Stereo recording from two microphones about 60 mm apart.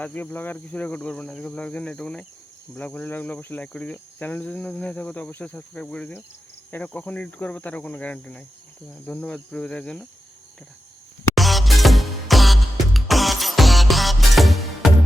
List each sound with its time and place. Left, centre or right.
0.0 s cricket: left
2.7 s cricket: left
11.3 s music: centre